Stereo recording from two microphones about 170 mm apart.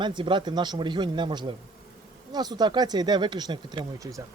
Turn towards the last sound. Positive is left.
turn(degrees=-20)  # may be behind; listen again after turning